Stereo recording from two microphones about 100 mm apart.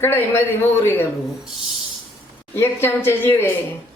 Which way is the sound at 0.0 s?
25° left (ahead or behind).